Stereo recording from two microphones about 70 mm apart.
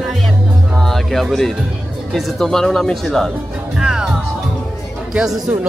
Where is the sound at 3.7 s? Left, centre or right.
Centre.